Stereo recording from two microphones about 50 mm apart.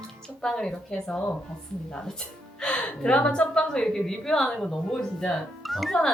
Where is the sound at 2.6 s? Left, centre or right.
Centre.